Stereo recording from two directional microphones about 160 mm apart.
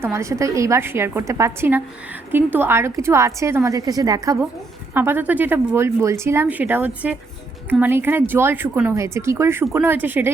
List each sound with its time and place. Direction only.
0.0 s speech: 20° right (ahead or behind)